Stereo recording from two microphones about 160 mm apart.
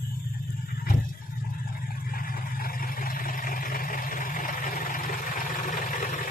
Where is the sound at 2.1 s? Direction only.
65° left (ahead or behind).